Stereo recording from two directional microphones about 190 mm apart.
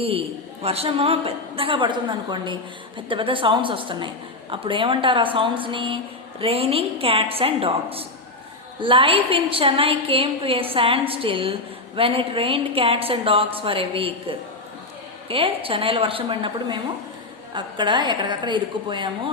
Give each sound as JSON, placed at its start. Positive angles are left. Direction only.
{"t": 0.0, "sound": "a woman's voice", "side_deg": -30}